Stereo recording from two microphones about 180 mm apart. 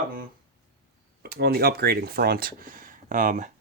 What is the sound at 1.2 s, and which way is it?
Speech, 60° right (ahead or behind).